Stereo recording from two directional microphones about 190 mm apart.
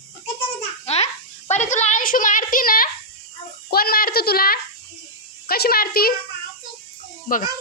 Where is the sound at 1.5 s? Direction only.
40° left (ahead or behind).